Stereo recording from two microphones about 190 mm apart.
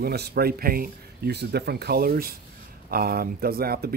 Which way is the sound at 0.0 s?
55° right (ahead or behind).